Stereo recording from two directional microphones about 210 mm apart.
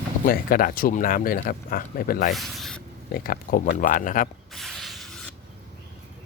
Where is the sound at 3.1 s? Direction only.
45° left (ahead or behind).